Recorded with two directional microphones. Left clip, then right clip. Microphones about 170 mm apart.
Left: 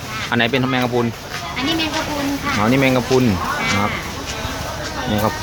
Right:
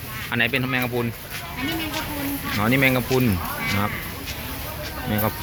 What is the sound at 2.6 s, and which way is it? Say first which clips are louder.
Speech: left 3 dB; 10° left (ahead or behind).